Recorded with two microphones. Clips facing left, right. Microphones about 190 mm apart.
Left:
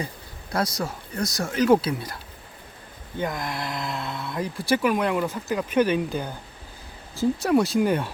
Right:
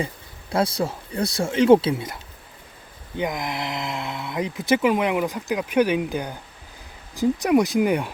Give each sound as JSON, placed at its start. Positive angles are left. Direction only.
{"t": 0.5, "sound": "speech", "side_deg": -30}
{"t": 3.2, "sound": "speech", "side_deg": -15}